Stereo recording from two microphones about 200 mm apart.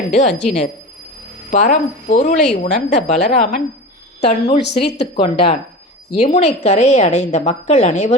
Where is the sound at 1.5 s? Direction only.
35° left (ahead or behind).